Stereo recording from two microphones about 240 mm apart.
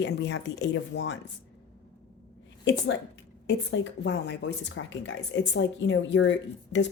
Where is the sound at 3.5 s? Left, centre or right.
Left.